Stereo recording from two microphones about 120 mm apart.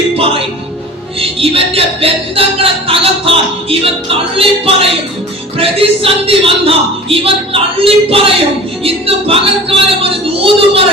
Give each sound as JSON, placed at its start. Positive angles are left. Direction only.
{"t": 1.2, "sound": "speech", "side_deg": -50}